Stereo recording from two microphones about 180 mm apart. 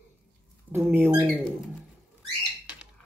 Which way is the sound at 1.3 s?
Centre (ahead or behind).